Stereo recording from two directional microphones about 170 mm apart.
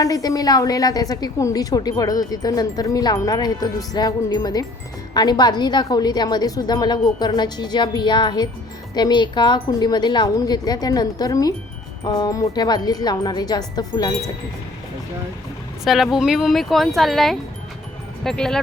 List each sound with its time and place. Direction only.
0.0 s speech: 20° left (ahead or behind)
15.8 s speech: centre (ahead or behind)